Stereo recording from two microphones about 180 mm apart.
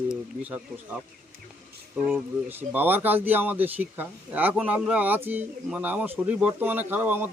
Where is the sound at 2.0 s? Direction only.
10° right (ahead or behind).